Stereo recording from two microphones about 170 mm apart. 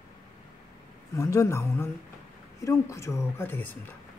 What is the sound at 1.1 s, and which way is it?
Speech, 20° left (ahead or behind).